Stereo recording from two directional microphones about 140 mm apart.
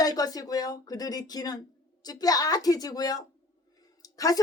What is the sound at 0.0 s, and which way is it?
Speech, 25° left (ahead or behind).